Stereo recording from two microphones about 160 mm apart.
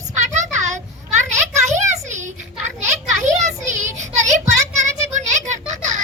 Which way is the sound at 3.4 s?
50° right (ahead or behind).